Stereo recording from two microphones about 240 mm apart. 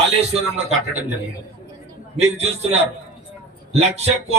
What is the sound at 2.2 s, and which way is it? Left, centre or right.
Speech, right.